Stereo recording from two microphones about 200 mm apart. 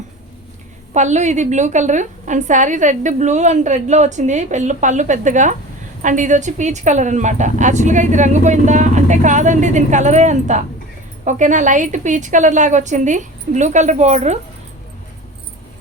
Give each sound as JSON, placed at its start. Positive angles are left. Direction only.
{"t": 0.9, "sound": "a woman's voice", "side_deg": -35}